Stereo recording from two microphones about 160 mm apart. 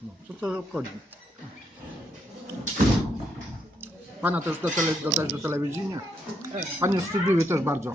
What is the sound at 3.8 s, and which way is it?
Speech, 10° right (ahead or behind).